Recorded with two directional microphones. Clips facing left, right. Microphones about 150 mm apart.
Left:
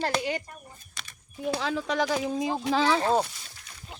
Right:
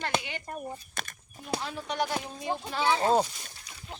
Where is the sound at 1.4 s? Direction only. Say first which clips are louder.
Left 6 dB; 90° left.